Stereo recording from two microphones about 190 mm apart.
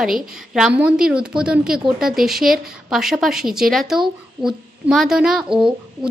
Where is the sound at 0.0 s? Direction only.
5° right (ahead or behind).